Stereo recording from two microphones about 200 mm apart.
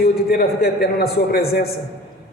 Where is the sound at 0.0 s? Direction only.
50° left (ahead or behind).